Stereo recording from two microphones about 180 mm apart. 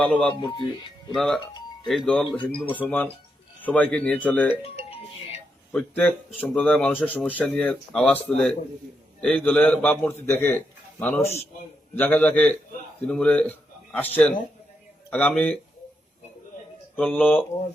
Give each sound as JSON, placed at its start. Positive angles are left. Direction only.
{"t": 0.0, "sound": "speech", "side_deg": 5}
{"t": 0.4, "sound": "speech", "side_deg": 25}
{"t": 1.1, "sound": "a man's voice", "side_deg": 0}
{"t": 5.7, "sound": "a man's voice", "side_deg": 5}
{"t": 15.1, "sound": "a man's voice", "side_deg": 5}
{"t": 16.9, "sound": "a man's voice", "side_deg": 10}